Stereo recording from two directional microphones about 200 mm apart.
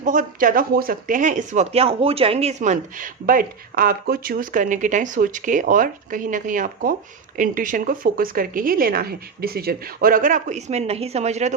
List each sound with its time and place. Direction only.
0.0 s speech: 40° right (ahead or behind)